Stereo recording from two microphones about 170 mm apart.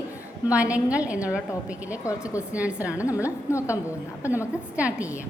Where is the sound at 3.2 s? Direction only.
15° left (ahead or behind).